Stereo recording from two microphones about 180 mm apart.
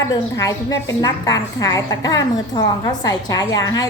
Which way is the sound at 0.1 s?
20° left (ahead or behind).